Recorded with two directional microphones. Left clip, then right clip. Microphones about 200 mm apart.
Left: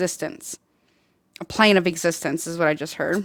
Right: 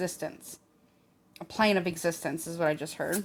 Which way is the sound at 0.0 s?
55° left (ahead or behind).